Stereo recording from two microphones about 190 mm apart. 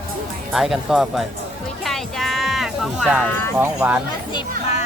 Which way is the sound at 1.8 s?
Centre (ahead or behind).